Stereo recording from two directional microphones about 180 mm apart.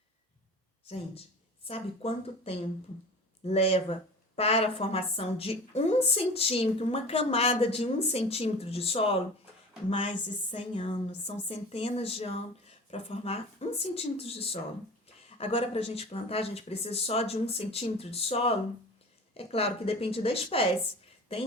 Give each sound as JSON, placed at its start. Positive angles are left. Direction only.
{"t": 1.6, "sound": "a woman's voice", "side_deg": 30}
{"t": 10.5, "sound": "a woman's voice", "side_deg": 35}